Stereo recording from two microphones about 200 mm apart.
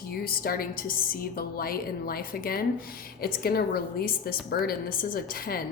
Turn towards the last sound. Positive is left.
turn(degrees=45)  # may be behind; listen again after turning